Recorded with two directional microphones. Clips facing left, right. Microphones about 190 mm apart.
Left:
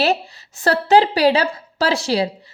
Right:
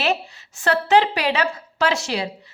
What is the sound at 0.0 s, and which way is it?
A woman's voice, 35° left (ahead or behind).